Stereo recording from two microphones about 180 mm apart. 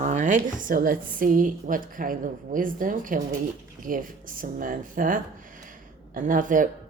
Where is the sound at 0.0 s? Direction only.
45° right (ahead or behind).